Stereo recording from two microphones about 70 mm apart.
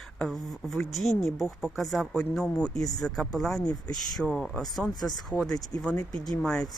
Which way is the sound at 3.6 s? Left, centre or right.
Left.